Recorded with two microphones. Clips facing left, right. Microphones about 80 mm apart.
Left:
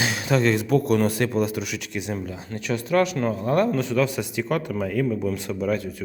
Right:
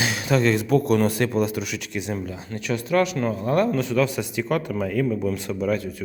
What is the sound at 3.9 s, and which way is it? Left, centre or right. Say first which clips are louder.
Speech: right 1 dB; centre.